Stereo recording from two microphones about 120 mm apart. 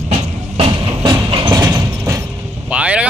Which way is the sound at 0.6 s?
45° right (ahead or behind).